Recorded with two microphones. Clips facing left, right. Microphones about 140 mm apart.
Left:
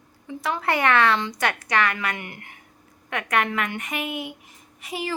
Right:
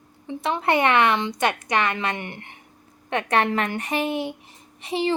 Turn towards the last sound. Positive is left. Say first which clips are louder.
# right 6 dB
turn(degrees=-25)  # may be behind; listen again after turning